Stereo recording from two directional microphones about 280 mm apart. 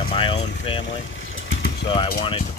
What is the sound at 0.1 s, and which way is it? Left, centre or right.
Vehicle, centre.